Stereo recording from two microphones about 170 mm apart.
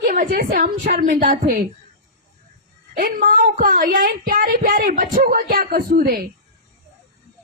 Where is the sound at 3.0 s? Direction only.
60° right (ahead or behind).